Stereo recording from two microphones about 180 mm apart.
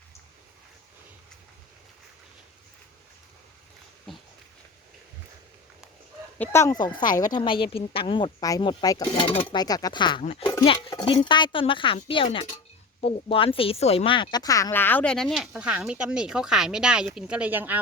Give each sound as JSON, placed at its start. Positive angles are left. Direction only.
{"t": 6.4, "sound": "speech", "side_deg": 15}